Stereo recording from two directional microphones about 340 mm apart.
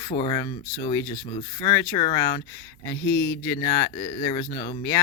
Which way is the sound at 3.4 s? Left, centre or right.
Centre.